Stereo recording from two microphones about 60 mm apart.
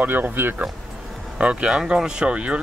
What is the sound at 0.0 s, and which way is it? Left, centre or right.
Speech, right.